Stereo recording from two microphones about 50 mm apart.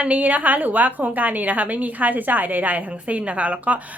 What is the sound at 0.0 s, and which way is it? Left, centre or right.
A woman's voice, right.